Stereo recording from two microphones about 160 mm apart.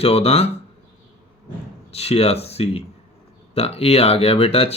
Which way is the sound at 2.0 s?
40° left (ahead or behind).